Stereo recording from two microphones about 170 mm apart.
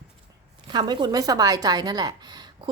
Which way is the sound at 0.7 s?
25° right (ahead or behind).